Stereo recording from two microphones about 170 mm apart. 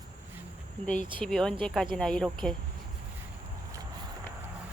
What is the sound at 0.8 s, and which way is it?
Speech, 45° left (ahead or behind).